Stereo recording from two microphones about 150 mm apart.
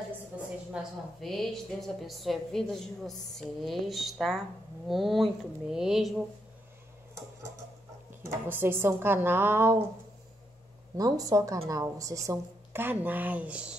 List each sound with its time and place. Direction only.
1.2 s a woman's voice: centre (ahead or behind)
8.2 s speech: 15° right (ahead or behind)
11.0 s a woman's voice: 25° right (ahead or behind); by 13.7 s 10° right (ahead or behind)